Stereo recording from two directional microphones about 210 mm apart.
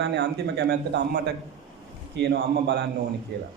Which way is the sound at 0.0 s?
50° right (ahead or behind).